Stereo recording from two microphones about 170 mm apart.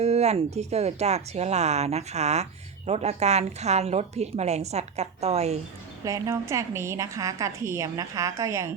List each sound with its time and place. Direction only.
0.0 s speech: 40° right (ahead or behind)
6.1 s a woman's voice: 20° right (ahead or behind)